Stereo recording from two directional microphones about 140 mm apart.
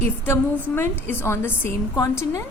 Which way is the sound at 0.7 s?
15° left (ahead or behind).